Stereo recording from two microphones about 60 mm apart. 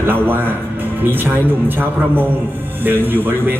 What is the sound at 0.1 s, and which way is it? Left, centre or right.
Speech, right.